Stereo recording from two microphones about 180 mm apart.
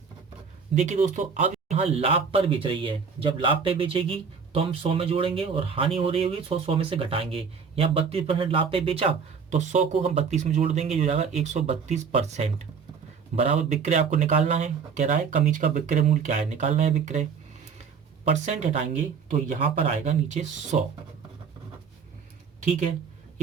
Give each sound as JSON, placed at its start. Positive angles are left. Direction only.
{"t": 0.8, "sound": "speech", "side_deg": -40}
{"t": 18.3, "sound": "speech", "side_deg": -40}